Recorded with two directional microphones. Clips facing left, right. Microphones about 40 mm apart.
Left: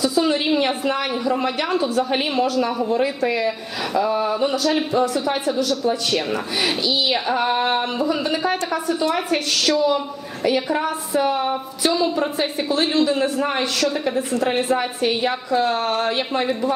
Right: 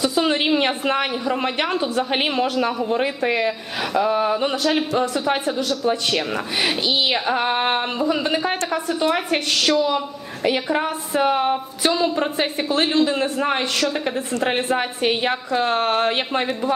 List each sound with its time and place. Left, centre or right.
0.0 s a woman's voice: right
6.8 s a woman's voice: right
7.1 s a woman's voice: right
13.2 s a woman's voice: right